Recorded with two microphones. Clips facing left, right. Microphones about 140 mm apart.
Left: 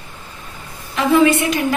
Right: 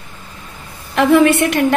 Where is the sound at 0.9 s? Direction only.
65° right (ahead or behind).